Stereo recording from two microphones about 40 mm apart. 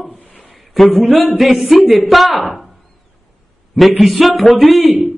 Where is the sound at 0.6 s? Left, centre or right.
Centre.